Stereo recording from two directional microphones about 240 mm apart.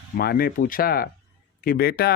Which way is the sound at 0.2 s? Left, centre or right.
Left.